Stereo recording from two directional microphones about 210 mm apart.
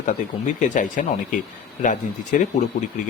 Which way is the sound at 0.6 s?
35° left (ahead or behind).